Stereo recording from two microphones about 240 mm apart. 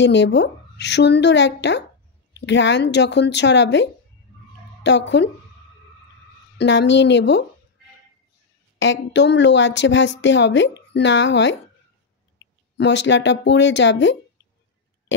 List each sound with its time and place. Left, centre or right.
0.0 s speech: left
6.6 s speech: left
8.7 s speech: left
12.4 s a sound: left
12.7 s speech: left